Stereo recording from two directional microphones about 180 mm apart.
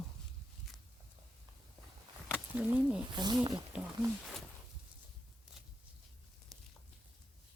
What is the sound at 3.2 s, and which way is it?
Speech, 25° right (ahead or behind).